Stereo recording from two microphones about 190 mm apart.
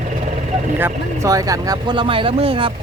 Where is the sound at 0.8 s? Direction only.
20° right (ahead or behind).